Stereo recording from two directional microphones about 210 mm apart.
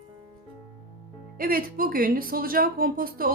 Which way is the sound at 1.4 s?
45° right (ahead or behind).